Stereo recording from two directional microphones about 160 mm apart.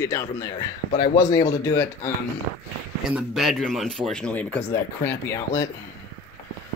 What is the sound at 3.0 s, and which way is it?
Speech, 5° right (ahead or behind).